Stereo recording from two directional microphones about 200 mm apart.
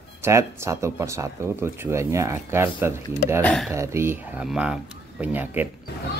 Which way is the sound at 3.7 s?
15° right (ahead or behind).